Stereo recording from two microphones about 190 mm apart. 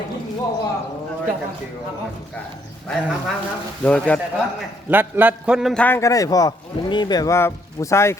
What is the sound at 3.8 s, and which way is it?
Speech, 5° left (ahead or behind).